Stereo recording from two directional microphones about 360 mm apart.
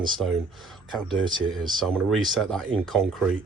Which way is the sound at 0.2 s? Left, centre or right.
Centre.